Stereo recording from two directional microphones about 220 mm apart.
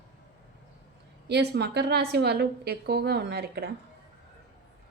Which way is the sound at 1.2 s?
50° right (ahead or behind).